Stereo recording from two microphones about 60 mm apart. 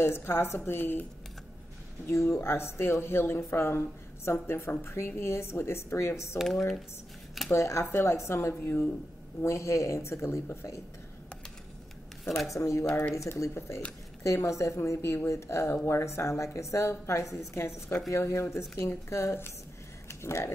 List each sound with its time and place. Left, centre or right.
0.0 s a woman's voice: left
2.0 s speech: left
7.5 s speech: left
12.3 s speech: centre
12.5 s a woman's voice: left
14.8 s a woman's voice: left